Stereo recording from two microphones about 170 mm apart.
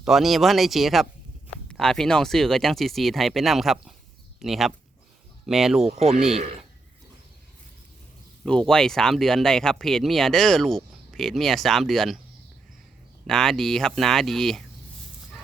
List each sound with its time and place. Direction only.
0.0 s speech: centre (ahead or behind)
5.8 s speech: 40° right (ahead or behind)
6.1 s speech: centre (ahead or behind)
8.4 s speech: 5° left (ahead or behind)
13.2 s speech: 5° left (ahead or behind)